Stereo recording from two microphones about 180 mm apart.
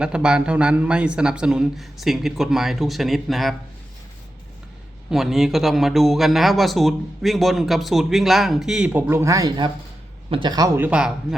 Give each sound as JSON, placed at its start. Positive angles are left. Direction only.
{"t": 0.0, "sound": "speech", "side_deg": -5}
{"t": 5.1, "sound": "a man's voice", "side_deg": 0}
{"t": 10.8, "sound": "speech", "side_deg": -5}